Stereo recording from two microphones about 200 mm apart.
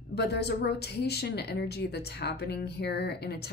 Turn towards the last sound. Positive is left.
turn(degrees=55)  # may be behind; listen again after turning